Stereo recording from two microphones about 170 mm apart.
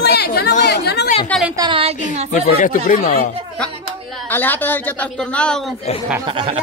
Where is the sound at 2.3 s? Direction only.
50° left (ahead or behind).